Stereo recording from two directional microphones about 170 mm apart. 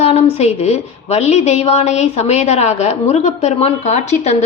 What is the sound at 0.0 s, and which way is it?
A woman's voice, 40° left (ahead or behind).